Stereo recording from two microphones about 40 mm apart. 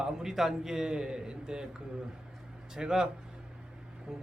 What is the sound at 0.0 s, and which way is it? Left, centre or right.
A man's voice, centre.